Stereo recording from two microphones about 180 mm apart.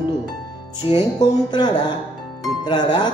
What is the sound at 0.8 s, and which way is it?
Speech, 25° left (ahead or behind).